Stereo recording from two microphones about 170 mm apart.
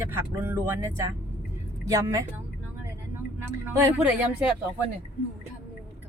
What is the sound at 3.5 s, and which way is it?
Speech, 15° right (ahead or behind).